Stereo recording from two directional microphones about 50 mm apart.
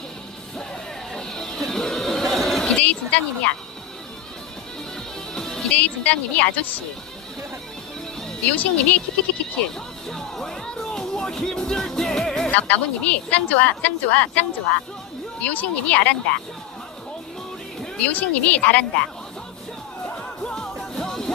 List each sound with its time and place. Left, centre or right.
1.1 s a sound: centre
2.7 s a sound: left
5.3 s music: centre
5.7 s a woman's voice: left
8.4 s a woman's voice: left
10.1 s speech: centre
10.9 s music: centre
12.5 s a woman's voice: left
17.9 s a woman's voice: left
20.7 s music: centre